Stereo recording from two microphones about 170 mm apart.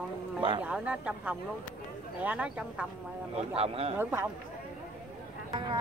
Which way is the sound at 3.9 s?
15° right (ahead or behind).